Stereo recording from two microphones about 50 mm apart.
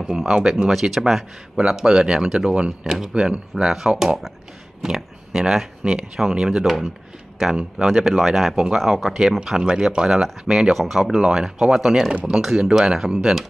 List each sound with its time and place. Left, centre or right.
0.0 s speech: centre
0.7 s speech: centre
6.6 s speech: centre